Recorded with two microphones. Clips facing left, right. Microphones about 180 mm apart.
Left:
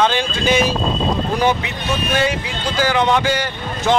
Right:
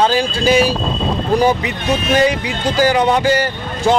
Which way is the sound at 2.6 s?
40° right (ahead or behind).